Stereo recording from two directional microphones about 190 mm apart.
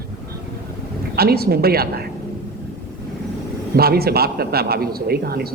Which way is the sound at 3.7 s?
55° right (ahead or behind).